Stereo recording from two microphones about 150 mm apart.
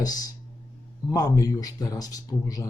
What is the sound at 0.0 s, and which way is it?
Speech, 25° left (ahead or behind).